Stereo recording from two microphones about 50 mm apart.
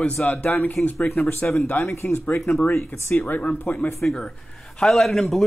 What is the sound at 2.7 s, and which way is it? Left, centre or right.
Speech, left.